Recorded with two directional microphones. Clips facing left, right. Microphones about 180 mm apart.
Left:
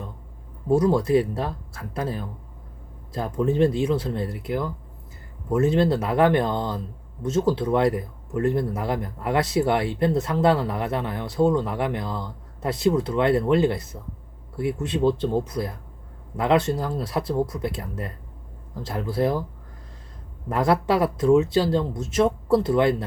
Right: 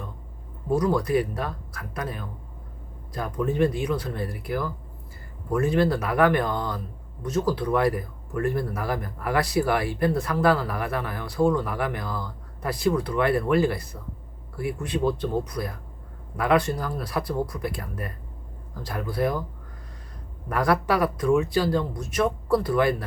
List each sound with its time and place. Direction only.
0.7 s speech: 25° left (ahead or behind)
20.5 s speech: 25° left (ahead or behind)